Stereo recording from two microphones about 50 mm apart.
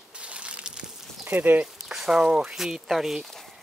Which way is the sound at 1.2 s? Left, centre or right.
Right.